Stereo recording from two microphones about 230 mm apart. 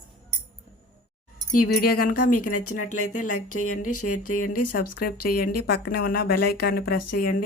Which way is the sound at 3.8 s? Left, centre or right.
Left.